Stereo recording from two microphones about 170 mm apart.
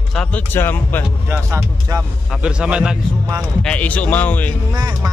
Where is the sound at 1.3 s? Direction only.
15° right (ahead or behind).